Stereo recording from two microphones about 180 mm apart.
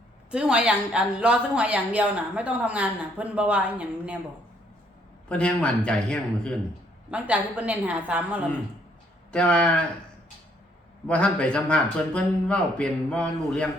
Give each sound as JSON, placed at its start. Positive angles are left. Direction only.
{"t": 0.3, "sound": "speech", "side_deg": -5}
{"t": 5.3, "sound": "a man's voice", "side_deg": 5}
{"t": 7.1, "sound": "speech", "side_deg": -5}
{"t": 9.3, "sound": "a man's voice", "side_deg": 5}
{"t": 11.1, "sound": "a man's voice", "side_deg": 5}